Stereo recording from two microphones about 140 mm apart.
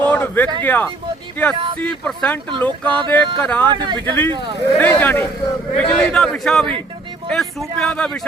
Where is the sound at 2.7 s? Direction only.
35° right (ahead or behind).